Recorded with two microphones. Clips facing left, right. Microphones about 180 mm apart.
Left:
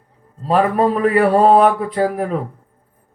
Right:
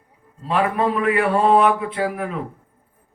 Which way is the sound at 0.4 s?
40° left (ahead or behind).